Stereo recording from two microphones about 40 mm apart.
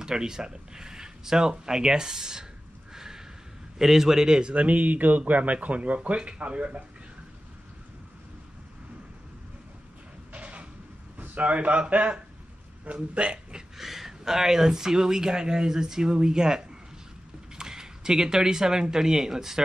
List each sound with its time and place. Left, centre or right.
0.0 s speech: centre
2.9 s a sound: centre
3.7 s speech: centre
4.6 s speech: right
10.3 s a sound: right
11.1 s a man's voice: right
13.7 s speech: centre